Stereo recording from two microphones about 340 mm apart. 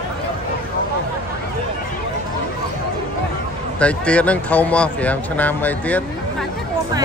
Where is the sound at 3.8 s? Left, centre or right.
Centre.